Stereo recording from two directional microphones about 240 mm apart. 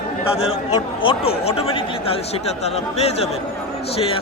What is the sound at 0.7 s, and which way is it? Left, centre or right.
Speech, left.